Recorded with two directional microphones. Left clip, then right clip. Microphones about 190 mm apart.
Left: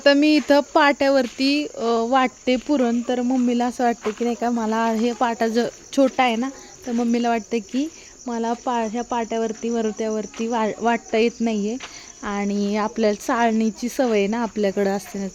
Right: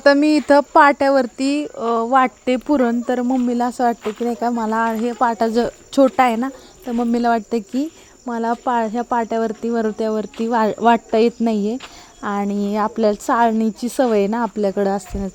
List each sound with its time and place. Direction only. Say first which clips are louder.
0.0 s speech: right 2 dB; 10° right (ahead or behind)
2.6 s speech: right 3 dB; 15° right (ahead or behind)
5.2 s speech: right 6 dB; 10° right (ahead or behind)
12.2 s speech: right 3 dB; 15° right (ahead or behind)